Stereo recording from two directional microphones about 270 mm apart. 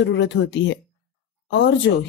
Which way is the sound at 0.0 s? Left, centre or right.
Left.